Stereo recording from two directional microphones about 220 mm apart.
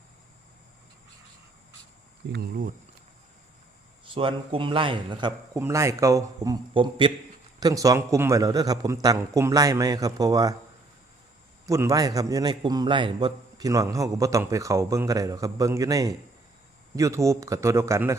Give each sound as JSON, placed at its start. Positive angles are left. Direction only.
{"t": 2.3, "sound": "speech", "side_deg": -40}
{"t": 4.0, "sound": "a man's voice", "side_deg": -20}
{"t": 11.6, "sound": "a man's voice", "side_deg": -15}